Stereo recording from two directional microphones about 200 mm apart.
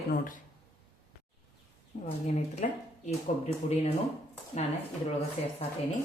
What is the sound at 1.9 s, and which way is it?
Speech, 40° left (ahead or behind).